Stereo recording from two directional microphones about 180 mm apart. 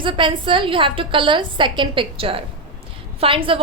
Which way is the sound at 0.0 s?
25° right (ahead or behind).